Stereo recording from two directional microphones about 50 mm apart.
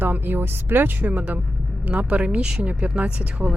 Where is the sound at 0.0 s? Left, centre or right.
Right.